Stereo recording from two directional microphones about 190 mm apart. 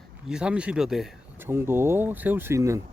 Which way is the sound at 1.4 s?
10° right (ahead or behind).